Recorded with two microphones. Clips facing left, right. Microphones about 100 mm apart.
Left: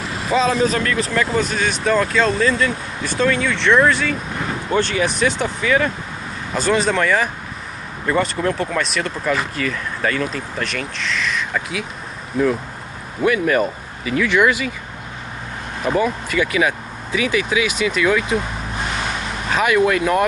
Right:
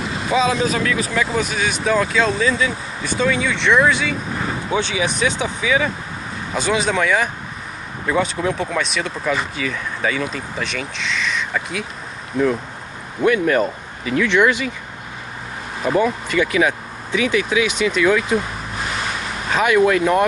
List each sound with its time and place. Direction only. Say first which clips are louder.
0.2 s speech: left 1 dB; centre (ahead or behind)
16.0 s speech: right 2 dB; 5° left (ahead or behind)
19.6 s speech: right 1 dB; centre (ahead or behind)